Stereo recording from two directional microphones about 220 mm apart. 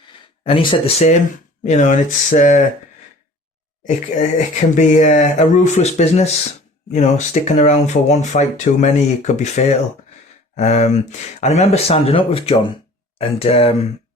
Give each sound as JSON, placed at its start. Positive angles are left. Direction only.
{"t": 0.4, "sound": "speech", "side_deg": 25}
{"t": 3.8, "sound": "speech", "side_deg": 35}